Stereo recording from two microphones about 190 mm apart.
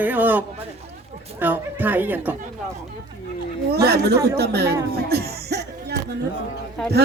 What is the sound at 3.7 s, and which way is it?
A man's voice, 55° right (ahead or behind).